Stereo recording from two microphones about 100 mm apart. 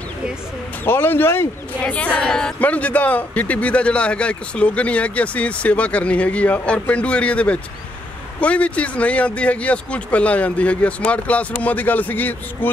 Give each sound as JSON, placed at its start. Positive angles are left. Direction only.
{"t": 0.8, "sound": "speech", "side_deg": 20}
{"t": 1.8, "sound": "speech", "side_deg": 15}